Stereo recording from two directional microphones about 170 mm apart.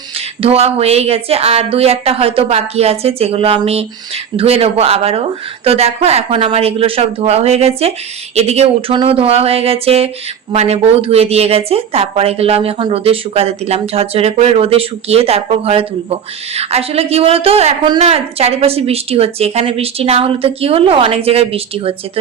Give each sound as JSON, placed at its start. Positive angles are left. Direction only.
{"t": 0.4, "sound": "speech", "side_deg": -35}